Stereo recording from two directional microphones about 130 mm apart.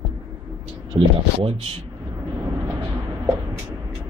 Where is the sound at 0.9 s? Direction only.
35° right (ahead or behind).